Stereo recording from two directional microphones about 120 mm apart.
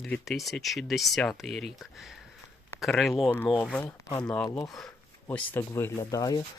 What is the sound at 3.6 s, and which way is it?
Speech, 10° left (ahead or behind).